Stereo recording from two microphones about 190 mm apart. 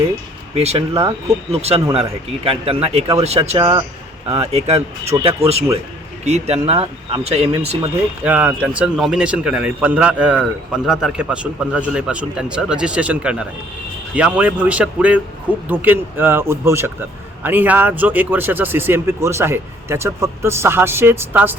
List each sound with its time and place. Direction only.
0.5 s speech: 35° right (ahead or behind)
8.2 s speech: 10° right (ahead or behind)